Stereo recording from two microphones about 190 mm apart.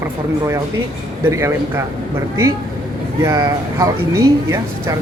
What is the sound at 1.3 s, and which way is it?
Speech, 15° right (ahead or behind).